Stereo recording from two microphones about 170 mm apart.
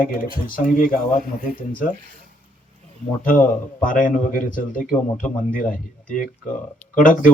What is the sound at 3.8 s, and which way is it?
Speech, 50° left (ahead or behind).